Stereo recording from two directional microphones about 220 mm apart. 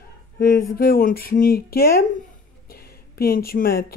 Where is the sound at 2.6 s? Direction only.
45° left (ahead or behind).